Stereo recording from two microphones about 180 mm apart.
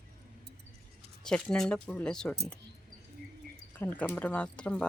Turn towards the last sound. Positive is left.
turn(degrees=5)  # may be behind; listen again after turning